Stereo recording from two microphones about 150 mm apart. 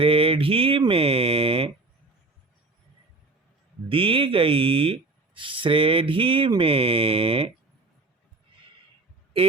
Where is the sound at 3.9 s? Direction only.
35° right (ahead or behind).